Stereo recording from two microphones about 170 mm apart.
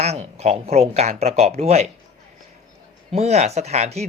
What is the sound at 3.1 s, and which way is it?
Speech, 40° right (ahead or behind).